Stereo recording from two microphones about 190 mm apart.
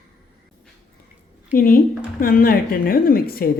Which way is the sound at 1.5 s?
50° left (ahead or behind).